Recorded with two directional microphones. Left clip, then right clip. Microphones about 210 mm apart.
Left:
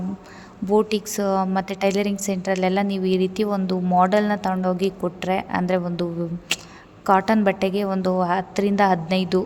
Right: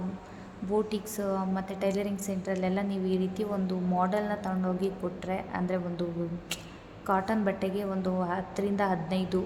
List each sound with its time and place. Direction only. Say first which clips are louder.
0.7 s a woman's voice: left 10 dB; 45° left (ahead or behind)